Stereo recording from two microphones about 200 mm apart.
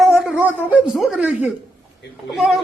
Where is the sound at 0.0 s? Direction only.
5° right (ahead or behind).